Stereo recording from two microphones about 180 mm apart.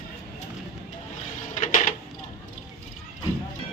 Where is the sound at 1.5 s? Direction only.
45° left (ahead or behind).